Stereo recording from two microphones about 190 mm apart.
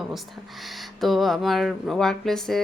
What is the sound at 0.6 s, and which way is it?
Speech, centre (ahead or behind).